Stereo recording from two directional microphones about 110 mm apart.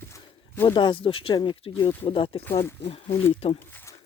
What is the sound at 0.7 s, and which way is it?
Speech, 45° left (ahead or behind).